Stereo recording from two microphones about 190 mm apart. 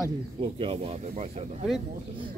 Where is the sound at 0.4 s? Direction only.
30° right (ahead or behind).